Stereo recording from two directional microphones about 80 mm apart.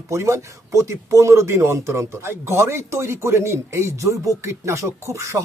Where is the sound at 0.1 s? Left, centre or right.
Right.